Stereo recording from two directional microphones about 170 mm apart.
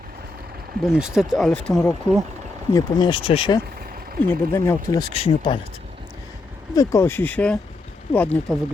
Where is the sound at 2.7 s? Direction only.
25° left (ahead or behind).